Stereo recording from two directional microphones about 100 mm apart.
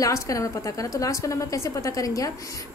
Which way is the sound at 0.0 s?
35° left (ahead or behind).